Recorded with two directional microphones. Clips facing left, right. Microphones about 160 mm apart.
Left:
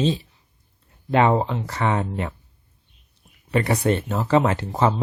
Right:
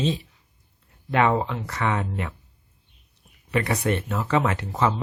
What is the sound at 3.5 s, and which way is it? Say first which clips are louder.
Speech: left 3 dB; 30° left (ahead or behind).